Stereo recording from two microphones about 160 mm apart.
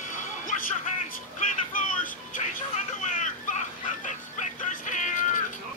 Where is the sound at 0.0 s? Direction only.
55° left (ahead or behind).